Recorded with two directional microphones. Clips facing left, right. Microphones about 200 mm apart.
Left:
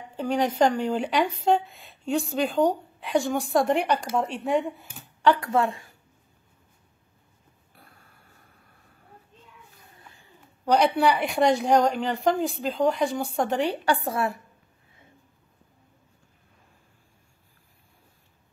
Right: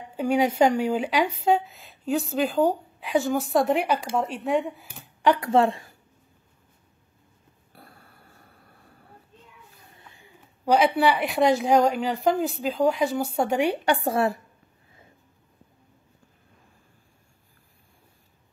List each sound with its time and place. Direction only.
0.1 s a woman's voice: 10° right (ahead or behind)
5.2 s speech: 20° right (ahead or behind)
7.7 s a sound: 40° right (ahead or behind)
10.1 s a woman's voice: 10° right (ahead or behind)
14.0 s a woman's voice: 30° right (ahead or behind)